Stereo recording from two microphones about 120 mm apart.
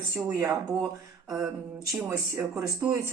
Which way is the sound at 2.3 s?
25° right (ahead or behind).